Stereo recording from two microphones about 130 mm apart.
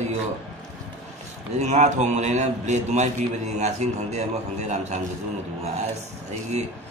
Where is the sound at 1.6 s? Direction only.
60° right (ahead or behind).